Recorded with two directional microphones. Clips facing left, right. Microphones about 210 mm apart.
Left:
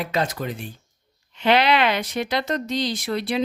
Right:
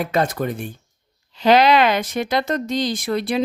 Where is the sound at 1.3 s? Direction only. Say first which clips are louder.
Right 4 dB; 40° right (ahead or behind).